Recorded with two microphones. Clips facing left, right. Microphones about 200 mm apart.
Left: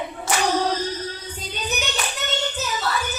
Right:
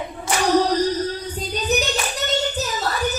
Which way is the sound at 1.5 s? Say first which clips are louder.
Right 6 dB; 40° right (ahead or behind).